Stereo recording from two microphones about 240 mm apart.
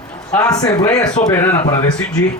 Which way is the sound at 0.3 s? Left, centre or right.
Centre.